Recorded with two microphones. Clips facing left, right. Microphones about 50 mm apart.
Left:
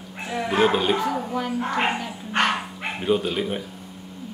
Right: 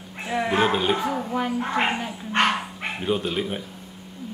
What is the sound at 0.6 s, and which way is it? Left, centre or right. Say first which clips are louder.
Speech: left 4 dB; centre.